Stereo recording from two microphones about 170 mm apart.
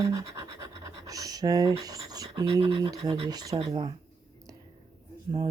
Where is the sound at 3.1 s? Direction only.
30° right (ahead or behind).